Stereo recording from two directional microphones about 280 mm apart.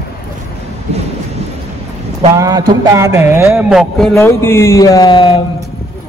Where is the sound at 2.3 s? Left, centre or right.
Centre.